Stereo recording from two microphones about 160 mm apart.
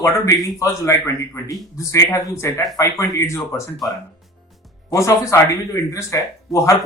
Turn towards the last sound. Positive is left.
turn(degrees=20)  # may be behind; listen again after turning